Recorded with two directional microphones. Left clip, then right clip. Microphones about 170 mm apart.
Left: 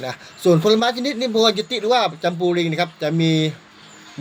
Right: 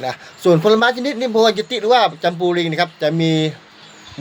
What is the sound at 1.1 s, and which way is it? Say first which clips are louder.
Speech: right 3 dB; 55° right (ahead or behind).